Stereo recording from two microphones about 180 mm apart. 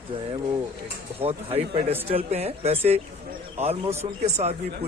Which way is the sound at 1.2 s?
35° right (ahead or behind).